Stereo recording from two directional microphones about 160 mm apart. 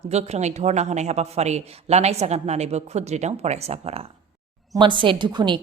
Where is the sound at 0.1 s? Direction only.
45° right (ahead or behind).